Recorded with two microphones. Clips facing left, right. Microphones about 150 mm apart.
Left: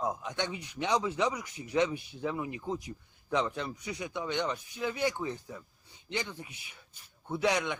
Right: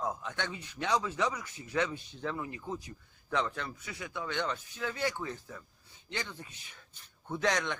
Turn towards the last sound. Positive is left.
turn(degrees=10)  # may be behind; listen again after turning